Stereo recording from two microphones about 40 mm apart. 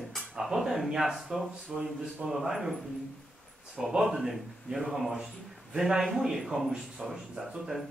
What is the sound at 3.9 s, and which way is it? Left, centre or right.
Speech, centre.